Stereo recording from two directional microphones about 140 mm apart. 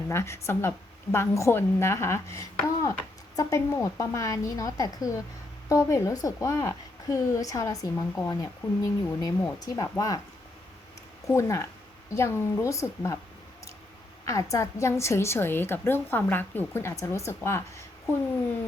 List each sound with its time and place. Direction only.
0.1 s a woman's voice: 20° left (ahead or behind)
11.3 s a woman's voice: 20° left (ahead or behind)
14.3 s a woman's voice: 20° left (ahead or behind)